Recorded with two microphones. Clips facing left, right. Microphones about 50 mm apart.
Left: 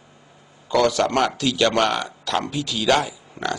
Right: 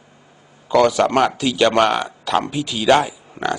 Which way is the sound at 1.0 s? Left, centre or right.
Right.